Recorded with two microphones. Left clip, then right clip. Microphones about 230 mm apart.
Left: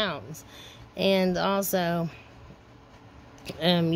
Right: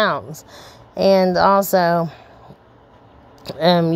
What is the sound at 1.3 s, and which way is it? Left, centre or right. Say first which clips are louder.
Speech: right 12 dB; right.